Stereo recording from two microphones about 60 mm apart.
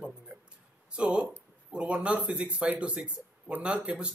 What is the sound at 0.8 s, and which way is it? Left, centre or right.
A man's voice, centre.